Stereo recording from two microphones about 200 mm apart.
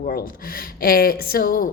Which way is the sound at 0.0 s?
50° left (ahead or behind).